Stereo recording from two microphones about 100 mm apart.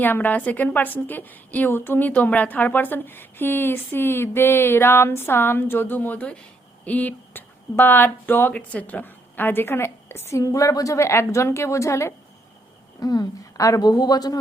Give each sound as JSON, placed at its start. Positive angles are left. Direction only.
{"t": 0.0, "sound": "a woman's voice", "side_deg": 20}
{"t": 13.0, "sound": "a woman's voice", "side_deg": 40}